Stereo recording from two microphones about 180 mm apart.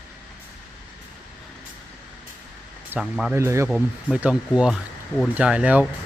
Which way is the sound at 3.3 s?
15° right (ahead or behind).